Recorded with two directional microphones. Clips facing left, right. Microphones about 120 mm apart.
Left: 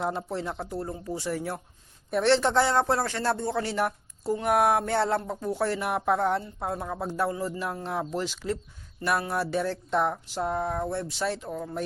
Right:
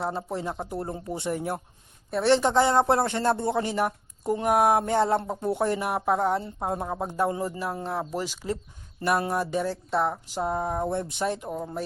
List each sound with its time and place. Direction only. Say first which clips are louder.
0.0 s speech: even; 5° right (ahead or behind); by 1.5 s 20° right (ahead or behind)
2.2 s speech: right 2 dB; 10° right (ahead or behind)
7.9 s speech: even; 5° right (ahead or behind)